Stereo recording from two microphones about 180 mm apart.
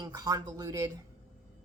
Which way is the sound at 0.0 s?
20° right (ahead or behind).